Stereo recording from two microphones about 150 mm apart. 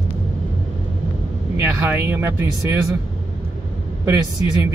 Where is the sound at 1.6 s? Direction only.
15° right (ahead or behind).